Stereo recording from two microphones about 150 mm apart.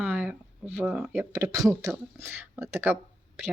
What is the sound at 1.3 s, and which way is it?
Speech, 20° right (ahead or behind).